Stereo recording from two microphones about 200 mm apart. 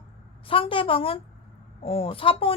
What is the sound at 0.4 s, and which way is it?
A woman's voice, 25° left (ahead or behind).